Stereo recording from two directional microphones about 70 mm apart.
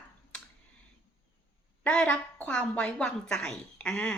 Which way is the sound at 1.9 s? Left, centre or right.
Centre.